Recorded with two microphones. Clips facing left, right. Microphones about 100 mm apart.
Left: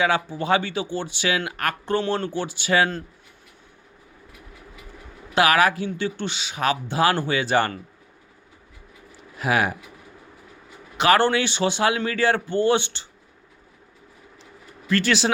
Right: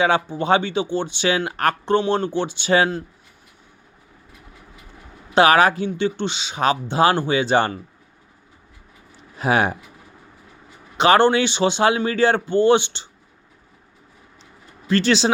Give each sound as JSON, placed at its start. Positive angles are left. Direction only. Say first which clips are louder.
{"t": 0.0, "sound": "speech", "louder": "right 3 dB", "side_deg": -25}
{"t": 5.3, "sound": "speech", "louder": "right 4 dB", "side_deg": -30}
{"t": 9.4, "sound": "speech", "louder": "right 3 dB", "side_deg": -30}
{"t": 10.9, "sound": "speech", "louder": "right 3 dB", "side_deg": -25}
{"t": 14.8, "sound": "speech", "louder": "right 3 dB", "side_deg": -25}